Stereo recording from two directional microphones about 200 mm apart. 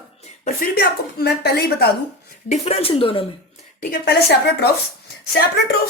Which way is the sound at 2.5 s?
30° left (ahead or behind).